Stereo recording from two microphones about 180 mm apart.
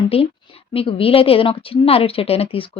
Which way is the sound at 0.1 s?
30° left (ahead or behind).